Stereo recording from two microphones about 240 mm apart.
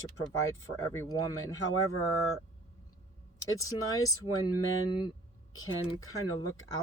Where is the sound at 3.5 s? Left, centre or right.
Centre.